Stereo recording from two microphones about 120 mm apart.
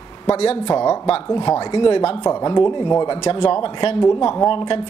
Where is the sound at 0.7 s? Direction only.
25° left (ahead or behind).